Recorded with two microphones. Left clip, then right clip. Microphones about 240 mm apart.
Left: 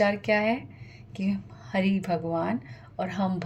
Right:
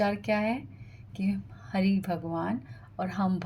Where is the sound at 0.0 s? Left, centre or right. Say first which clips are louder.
Left 4 dB; right.